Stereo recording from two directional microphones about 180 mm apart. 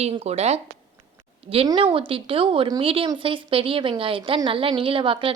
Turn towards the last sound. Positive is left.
turn(degrees=-30)  # may be behind; listen again after turning